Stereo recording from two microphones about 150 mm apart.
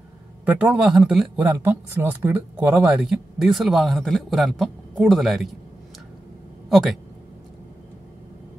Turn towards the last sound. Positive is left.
turn(degrees=0)  # may be behind; listen again after turning